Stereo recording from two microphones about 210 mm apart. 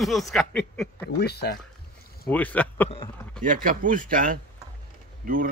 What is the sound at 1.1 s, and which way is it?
Speech, 50° left (ahead or behind).